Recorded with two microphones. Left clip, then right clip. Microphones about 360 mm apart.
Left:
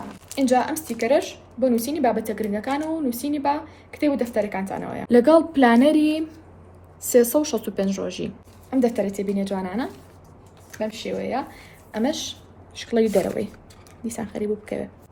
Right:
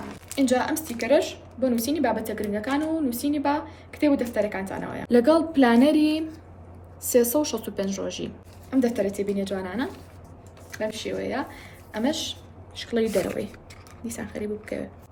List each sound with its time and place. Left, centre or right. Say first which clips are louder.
0.3 s a woman's voice: left 3 dB; centre